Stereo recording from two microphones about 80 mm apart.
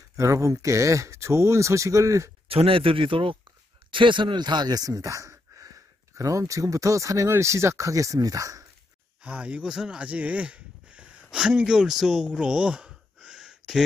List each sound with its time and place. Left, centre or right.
0.1 s speech: right
2.9 s speech: right
9.2 s speech: centre
12.4 s a sound: centre